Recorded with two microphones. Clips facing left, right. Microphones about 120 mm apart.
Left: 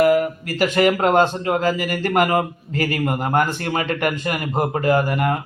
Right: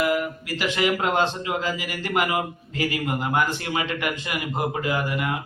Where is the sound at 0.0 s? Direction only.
45° left (ahead or behind).